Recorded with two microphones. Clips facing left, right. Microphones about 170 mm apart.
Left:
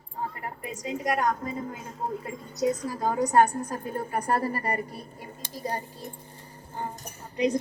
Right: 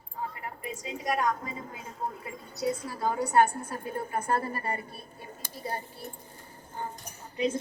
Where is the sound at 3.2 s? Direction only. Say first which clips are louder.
Left 2 dB; 40° left (ahead or behind).